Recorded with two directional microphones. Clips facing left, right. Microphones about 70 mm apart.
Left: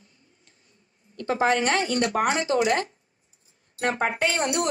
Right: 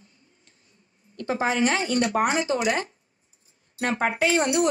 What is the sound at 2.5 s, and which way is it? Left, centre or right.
Speech, left.